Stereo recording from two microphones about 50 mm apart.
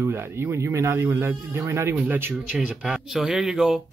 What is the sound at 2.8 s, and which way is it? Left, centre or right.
Speech, centre.